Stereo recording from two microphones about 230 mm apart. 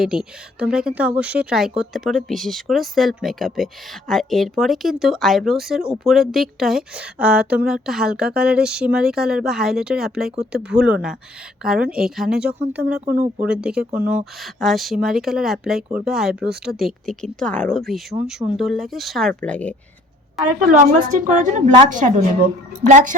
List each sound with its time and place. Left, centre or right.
0.0 s a woman's voice: centre
21.2 s a woman's voice: right